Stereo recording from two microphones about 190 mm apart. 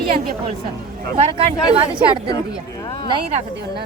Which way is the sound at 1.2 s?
30° right (ahead or behind).